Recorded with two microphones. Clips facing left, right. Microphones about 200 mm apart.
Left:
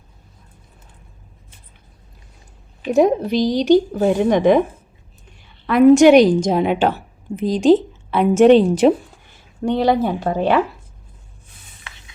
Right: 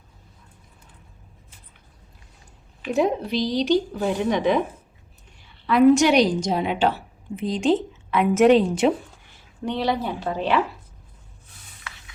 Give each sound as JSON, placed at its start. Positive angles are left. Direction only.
{"t": 2.8, "sound": "a woman's voice", "side_deg": 45}
{"t": 5.6, "sound": "a woman's voice", "side_deg": 50}
{"t": 9.6, "sound": "a woman's voice", "side_deg": 50}
{"t": 11.8, "sound": "stir", "side_deg": 25}